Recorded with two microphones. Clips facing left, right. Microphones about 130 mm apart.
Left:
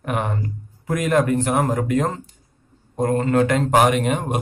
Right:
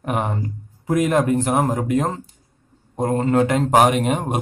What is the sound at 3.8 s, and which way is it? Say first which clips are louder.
Speech: right 2 dB; 40° right (ahead or behind).